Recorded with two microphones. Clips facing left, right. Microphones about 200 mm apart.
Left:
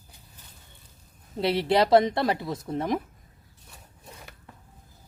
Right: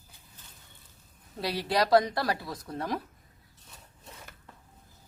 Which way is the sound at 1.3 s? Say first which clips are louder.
Left 6 dB; 25° left (ahead or behind).